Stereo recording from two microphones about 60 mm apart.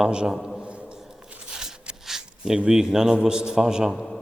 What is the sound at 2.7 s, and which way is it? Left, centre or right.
A man's voice, centre.